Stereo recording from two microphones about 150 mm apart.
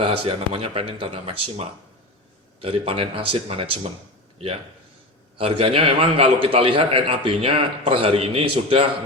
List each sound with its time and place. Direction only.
0.0 s a man's voice: 35° right (ahead or behind)
5.4 s a man's voice: 40° right (ahead or behind)